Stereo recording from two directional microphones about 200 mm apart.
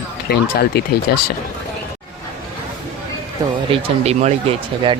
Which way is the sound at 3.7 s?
30° right (ahead or behind).